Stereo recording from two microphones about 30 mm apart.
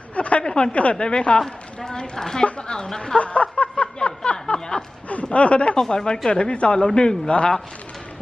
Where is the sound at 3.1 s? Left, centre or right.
Left.